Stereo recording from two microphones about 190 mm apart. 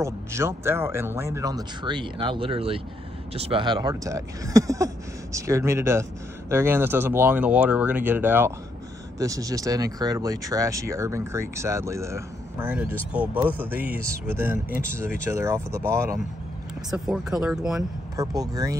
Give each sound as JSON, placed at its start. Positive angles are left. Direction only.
{"t": 0.0, "sound": "speech", "side_deg": -15}
{"t": 16.9, "sound": "speech", "side_deg": -5}
{"t": 18.1, "sound": "speech", "side_deg": -20}